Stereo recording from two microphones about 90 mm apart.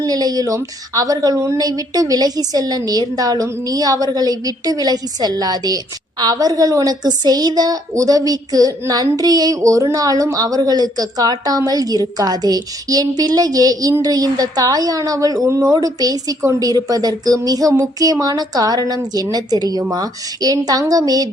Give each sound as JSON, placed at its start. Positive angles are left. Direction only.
{"t": 0.0, "sound": "a woman's voice", "side_deg": -45}